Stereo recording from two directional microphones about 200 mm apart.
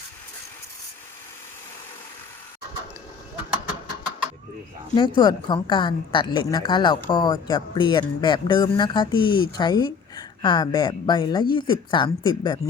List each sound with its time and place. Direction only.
4.9 s a woman's voice: 25° left (ahead or behind)